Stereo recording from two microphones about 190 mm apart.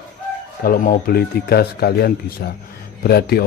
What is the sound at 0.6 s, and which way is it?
A man's voice, 45° left (ahead or behind).